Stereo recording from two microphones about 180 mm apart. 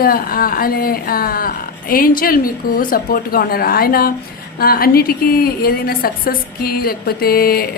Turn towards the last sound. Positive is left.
turn(degrees=55)  # may be behind; listen again after turning